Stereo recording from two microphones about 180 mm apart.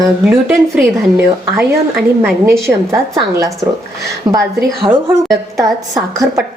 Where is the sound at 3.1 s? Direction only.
15° right (ahead or behind).